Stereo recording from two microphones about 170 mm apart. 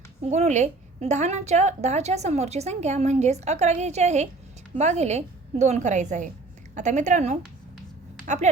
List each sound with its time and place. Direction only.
0.2 s a woman's voice: 40° right (ahead or behind)